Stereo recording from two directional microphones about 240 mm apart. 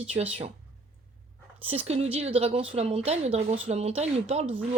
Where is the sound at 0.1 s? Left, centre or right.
Right.